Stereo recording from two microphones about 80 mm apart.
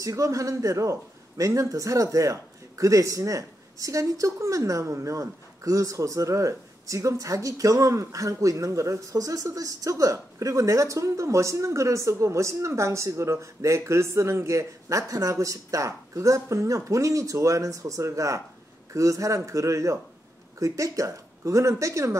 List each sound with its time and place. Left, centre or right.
0.0 s a man's voice: right